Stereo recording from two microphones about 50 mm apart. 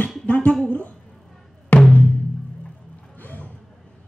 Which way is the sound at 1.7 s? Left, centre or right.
Left.